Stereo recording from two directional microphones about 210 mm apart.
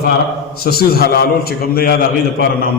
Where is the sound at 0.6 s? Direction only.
45° left (ahead or behind).